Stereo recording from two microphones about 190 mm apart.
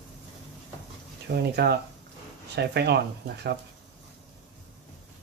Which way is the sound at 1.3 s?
65° right (ahead or behind).